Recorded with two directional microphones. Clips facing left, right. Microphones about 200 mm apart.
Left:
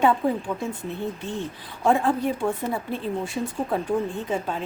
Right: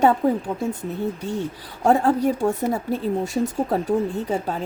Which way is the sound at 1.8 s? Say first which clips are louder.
Right 3 dB; 40° right (ahead or behind).